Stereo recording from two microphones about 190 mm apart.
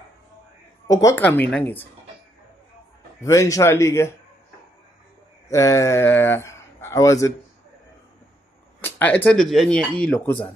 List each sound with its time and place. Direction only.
0.8 s a woman's voice: 15° left (ahead or behind)
3.2 s a man's voice: 15° left (ahead or behind)
5.5 s speech: 15° left (ahead or behind)
8.8 s speech: 10° left (ahead or behind)